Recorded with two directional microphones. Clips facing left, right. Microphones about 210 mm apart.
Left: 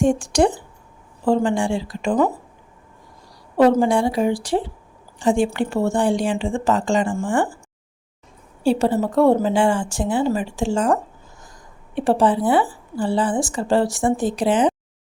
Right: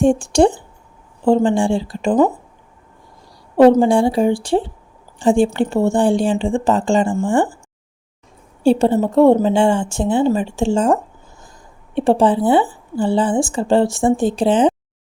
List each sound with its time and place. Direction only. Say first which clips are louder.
0.0 s a woman's voice: right 4 dB; 30° right (ahead or behind)
3.8 s a woman's voice: right 4 dB; 30° right (ahead or behind)
8.8 s a woman's voice: right 4 dB; 25° right (ahead or behind)